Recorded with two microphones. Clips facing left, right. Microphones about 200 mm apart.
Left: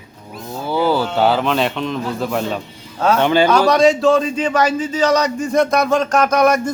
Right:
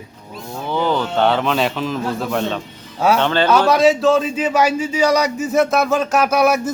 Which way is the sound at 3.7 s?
5° right (ahead or behind).